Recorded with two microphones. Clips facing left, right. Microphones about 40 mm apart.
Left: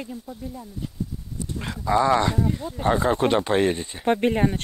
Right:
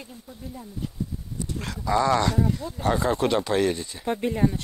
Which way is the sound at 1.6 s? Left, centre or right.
Left.